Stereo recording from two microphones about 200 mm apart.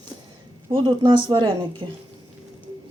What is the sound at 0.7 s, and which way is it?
Speech, 25° right (ahead or behind).